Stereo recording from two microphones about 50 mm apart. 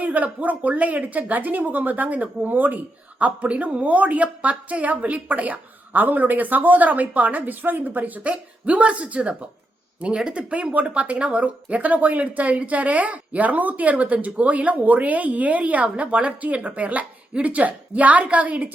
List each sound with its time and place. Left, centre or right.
0.0 s a woman's voice: right
3.2 s a woman's voice: right
8.2 s speech: right